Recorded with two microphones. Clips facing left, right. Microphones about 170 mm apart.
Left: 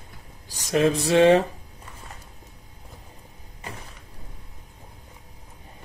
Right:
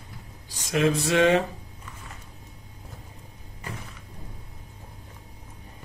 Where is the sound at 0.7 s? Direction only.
30° left (ahead or behind).